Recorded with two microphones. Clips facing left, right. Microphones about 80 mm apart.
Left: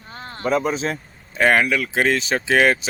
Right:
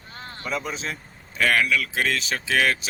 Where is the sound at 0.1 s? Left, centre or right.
Left.